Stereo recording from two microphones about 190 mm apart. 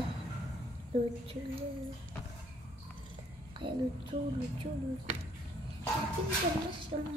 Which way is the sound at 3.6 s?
25° right (ahead or behind).